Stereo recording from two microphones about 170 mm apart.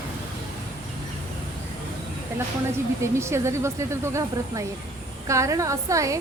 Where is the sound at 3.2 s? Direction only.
15° right (ahead or behind).